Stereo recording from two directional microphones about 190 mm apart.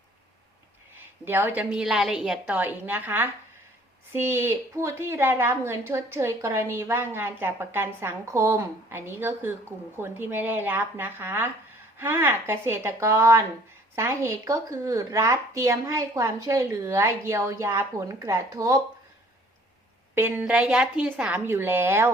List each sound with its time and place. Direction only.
0.9 s a woman's voice: 10° right (ahead or behind)
20.1 s a woman's voice: 10° right (ahead or behind)